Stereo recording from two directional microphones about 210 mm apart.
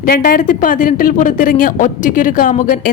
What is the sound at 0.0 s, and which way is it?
A woman's voice, 40° left (ahead or behind).